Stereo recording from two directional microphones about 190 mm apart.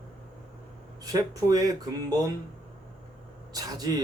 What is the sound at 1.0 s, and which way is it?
Speech, 20° right (ahead or behind).